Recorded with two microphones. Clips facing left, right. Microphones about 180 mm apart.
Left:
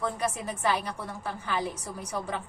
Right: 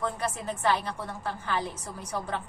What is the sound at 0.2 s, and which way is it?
A woman's voice, 10° left (ahead or behind).